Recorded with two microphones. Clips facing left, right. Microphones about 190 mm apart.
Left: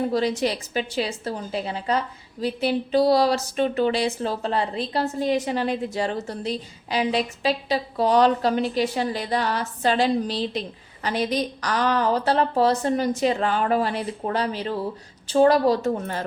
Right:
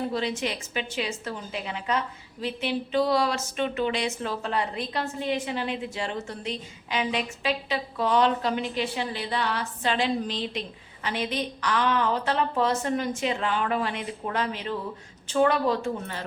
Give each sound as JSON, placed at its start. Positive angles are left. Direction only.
{"t": 0.1, "sound": "speech", "side_deg": 40}